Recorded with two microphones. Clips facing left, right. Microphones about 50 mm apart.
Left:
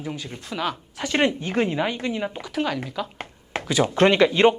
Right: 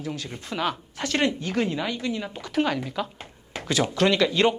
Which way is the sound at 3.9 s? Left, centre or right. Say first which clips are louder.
Left 5 dB; left.